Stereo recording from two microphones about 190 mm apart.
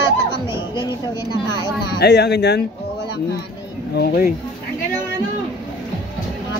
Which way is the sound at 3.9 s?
60° left (ahead or behind).